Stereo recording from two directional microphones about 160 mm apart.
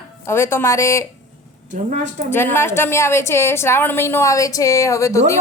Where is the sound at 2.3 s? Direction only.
15° left (ahead or behind).